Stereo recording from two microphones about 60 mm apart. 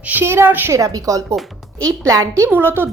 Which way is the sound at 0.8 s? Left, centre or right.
Right.